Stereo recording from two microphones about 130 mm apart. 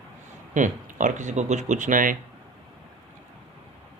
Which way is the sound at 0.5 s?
75° right (ahead or behind).